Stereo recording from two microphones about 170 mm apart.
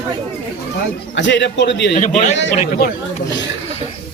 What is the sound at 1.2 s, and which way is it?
Speech, 90° left.